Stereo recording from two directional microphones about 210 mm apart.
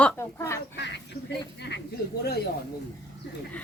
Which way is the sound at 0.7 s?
55° left (ahead or behind).